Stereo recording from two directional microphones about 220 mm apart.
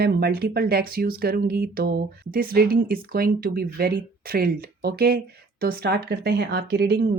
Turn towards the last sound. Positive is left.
turn(degrees=-45)  # may be behind; listen again after turning